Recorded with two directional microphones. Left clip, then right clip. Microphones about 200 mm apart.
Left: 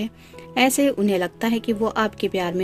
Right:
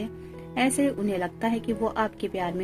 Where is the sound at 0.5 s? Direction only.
45° left (ahead or behind).